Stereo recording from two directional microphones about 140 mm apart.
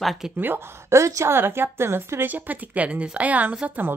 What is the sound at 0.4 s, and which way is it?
A woman's voice, 15° right (ahead or behind).